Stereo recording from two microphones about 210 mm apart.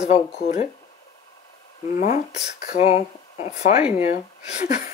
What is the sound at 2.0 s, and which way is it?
Speech, 40° left (ahead or behind).